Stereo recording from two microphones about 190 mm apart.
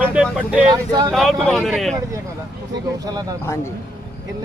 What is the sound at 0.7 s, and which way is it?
Speech, 20° right (ahead or behind).